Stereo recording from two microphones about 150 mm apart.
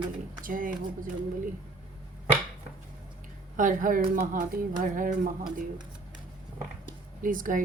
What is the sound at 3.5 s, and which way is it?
A woman's voice, 60° right (ahead or behind).